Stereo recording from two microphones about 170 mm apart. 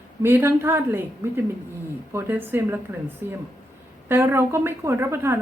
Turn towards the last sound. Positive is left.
turn(degrees=-15)  # may be behind; listen again after turning